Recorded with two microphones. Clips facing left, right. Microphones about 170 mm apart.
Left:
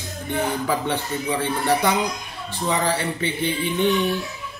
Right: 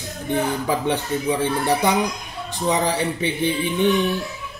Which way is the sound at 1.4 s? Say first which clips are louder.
Left 2 dB; 15° right (ahead or behind).